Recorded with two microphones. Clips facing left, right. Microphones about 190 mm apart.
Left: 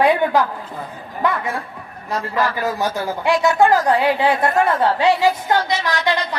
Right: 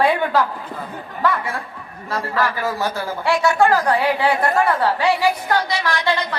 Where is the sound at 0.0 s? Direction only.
15° left (ahead or behind).